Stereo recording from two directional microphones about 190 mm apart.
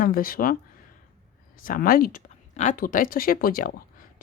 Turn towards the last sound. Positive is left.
turn(degrees=50)  # may be behind; listen again after turning